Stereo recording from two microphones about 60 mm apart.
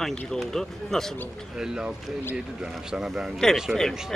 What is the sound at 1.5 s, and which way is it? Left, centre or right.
Speech, centre.